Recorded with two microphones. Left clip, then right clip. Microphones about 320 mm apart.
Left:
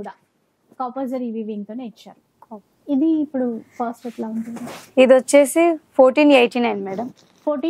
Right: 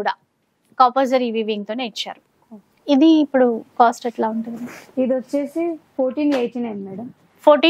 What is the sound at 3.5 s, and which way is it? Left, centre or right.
Speech, right.